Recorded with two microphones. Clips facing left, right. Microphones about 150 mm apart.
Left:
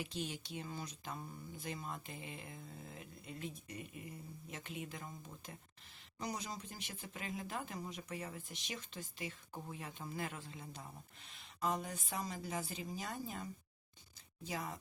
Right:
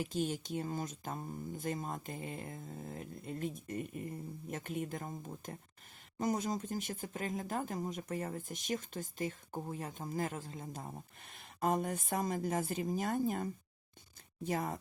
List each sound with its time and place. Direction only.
0.0 s speech: 45° right (ahead or behind)